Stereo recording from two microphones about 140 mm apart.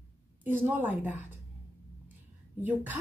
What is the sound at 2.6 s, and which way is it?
Speech, 10° right (ahead or behind).